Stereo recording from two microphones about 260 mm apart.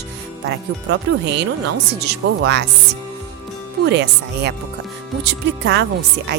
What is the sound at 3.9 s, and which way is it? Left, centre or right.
Speech, right.